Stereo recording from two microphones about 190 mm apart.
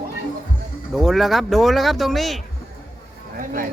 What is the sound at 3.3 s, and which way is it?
Speech, 45° right (ahead or behind).